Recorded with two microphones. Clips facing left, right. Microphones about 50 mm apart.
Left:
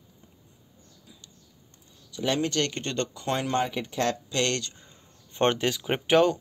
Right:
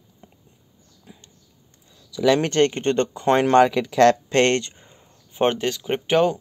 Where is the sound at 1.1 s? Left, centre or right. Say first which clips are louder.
Right 8 dB; right.